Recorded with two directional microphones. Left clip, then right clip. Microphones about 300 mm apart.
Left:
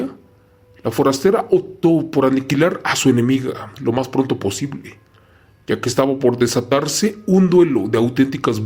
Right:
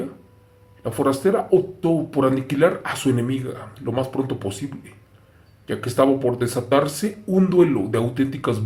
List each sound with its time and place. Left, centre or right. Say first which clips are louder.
0.8 s speech: left 5 dB; left